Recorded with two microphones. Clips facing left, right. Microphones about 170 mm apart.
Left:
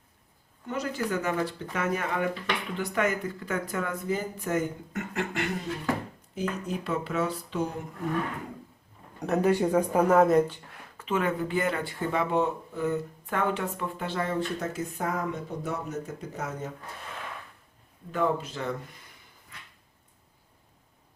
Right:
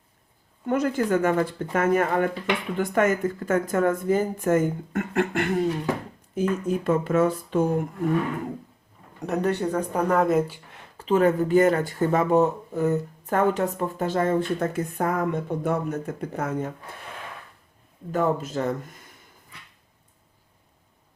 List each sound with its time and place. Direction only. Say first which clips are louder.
0.7 s speech: right 8 dB; 55° right (ahead or behind)
9.2 s speech: left 1 dB; 5° left (ahead or behind)
10.9 s speech: right 8 dB; 35° right (ahead or behind); by 16.7 s 55° right (ahead or behind)
18.1 s speech: right 4 dB; 45° right (ahead or behind)